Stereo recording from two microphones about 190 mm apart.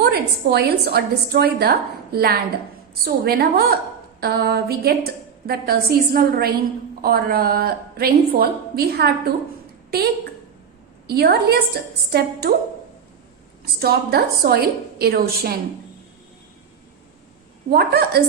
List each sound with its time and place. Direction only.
0.0 s a woman's voice: 55° right (ahead or behind)
13.7 s a woman's voice: 55° right (ahead or behind)
17.7 s a woman's voice: 55° right (ahead or behind)